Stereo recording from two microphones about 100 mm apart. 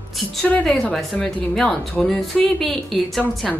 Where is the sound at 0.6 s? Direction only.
5° left (ahead or behind).